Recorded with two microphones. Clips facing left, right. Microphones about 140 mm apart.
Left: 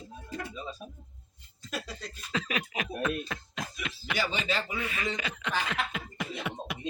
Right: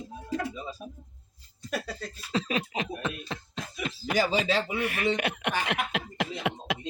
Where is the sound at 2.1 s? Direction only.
30° right (ahead or behind).